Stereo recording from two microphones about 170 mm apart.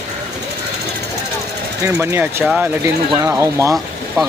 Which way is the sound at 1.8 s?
15° right (ahead or behind).